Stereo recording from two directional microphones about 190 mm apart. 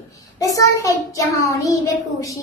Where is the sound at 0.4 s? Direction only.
15° left (ahead or behind).